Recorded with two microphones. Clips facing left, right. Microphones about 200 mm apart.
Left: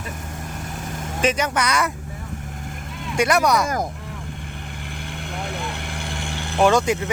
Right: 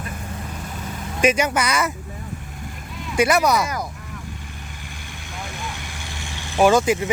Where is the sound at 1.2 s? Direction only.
10° right (ahead or behind).